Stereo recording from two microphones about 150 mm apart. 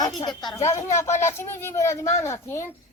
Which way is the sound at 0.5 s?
20° left (ahead or behind).